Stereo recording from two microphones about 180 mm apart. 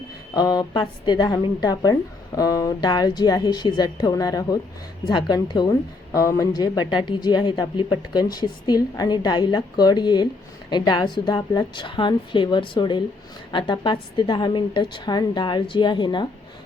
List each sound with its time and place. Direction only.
0.3 s a woman's voice: 20° left (ahead or behind)